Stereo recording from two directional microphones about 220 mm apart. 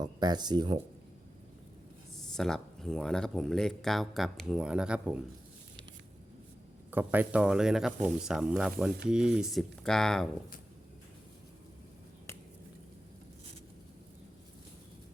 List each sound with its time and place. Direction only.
0.0 s speech: 20° right (ahead or behind)
2.1 s speech: centre (ahead or behind)
6.9 s speech: 10° right (ahead or behind)